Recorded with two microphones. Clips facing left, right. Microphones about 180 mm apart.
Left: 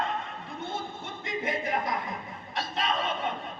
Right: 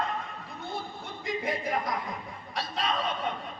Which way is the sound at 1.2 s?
Centre (ahead or behind).